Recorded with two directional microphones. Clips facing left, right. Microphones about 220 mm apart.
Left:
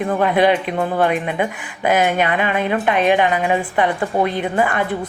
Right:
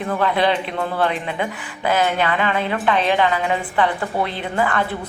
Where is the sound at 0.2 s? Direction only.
15° left (ahead or behind).